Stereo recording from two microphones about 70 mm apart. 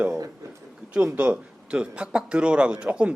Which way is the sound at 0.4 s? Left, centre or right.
Right.